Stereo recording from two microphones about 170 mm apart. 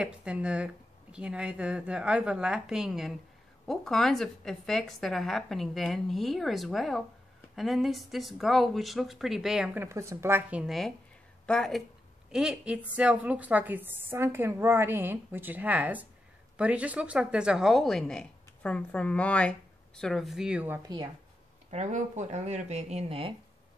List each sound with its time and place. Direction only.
0.0 s a woman's voice: 5° right (ahead or behind)
9.8 s a woman's voice: 15° right (ahead or behind)
21.6 s speech: 45° right (ahead or behind)